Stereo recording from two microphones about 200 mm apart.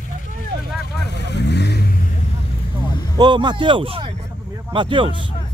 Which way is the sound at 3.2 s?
20° right (ahead or behind).